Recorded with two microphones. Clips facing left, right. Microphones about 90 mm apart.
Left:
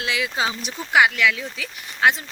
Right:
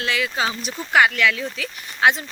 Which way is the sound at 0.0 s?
15° left (ahead or behind).